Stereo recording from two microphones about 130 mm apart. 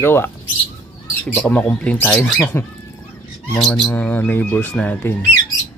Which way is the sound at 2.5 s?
15° left (ahead or behind).